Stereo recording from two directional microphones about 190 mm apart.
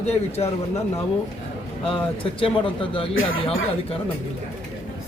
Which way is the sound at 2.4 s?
25° left (ahead or behind).